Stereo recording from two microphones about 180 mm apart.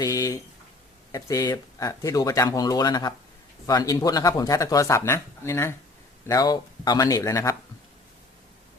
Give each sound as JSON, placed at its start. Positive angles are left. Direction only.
{"t": 0.0, "sound": "speech", "side_deg": 20}